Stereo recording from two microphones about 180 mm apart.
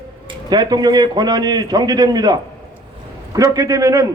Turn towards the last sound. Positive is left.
turn(degrees=-20)  # may be behind; listen again after turning